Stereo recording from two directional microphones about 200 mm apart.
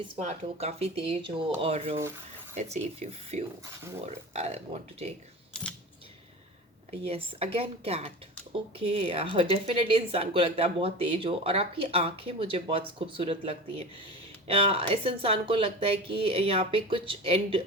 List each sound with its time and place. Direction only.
0.3 s speech: 30° right (ahead or behind)
5.5 s camera: 5° left (ahead or behind)
6.9 s a woman's voice: 30° right (ahead or behind)